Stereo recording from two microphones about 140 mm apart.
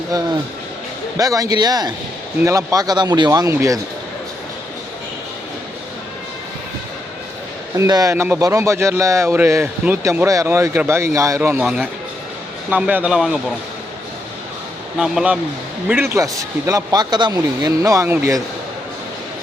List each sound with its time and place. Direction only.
0.1 s speech: 25° right (ahead or behind)
7.8 s speech: 25° right (ahead or behind)
8.1 s speech: 15° right (ahead or behind)
12.7 s a man's voice: 10° right (ahead or behind)
14.9 s a man's voice: 5° right (ahead or behind)